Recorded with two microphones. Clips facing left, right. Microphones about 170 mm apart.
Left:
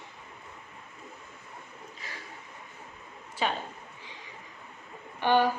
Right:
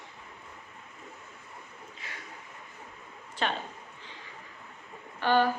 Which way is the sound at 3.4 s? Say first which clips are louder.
Left 1 dB; 5° left (ahead or behind).